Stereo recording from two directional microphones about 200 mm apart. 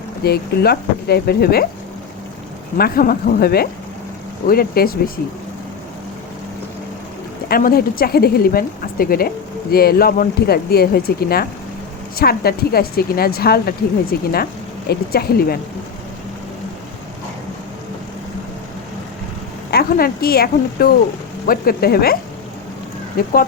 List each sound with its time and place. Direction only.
0.3 s speech: 50° left (ahead or behind)
2.7 s speech: 50° left (ahead or behind)
7.4 s speech: 50° left (ahead or behind)
19.7 s speech: 50° left (ahead or behind)